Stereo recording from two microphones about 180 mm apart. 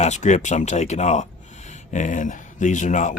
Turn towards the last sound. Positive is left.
turn(degrees=40)  # may be behind; listen again after turning